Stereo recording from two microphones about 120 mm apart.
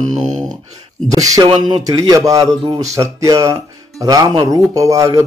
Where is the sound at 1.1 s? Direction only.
30° right (ahead or behind).